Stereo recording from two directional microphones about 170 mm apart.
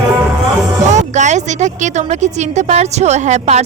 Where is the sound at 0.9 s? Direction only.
45° right (ahead or behind).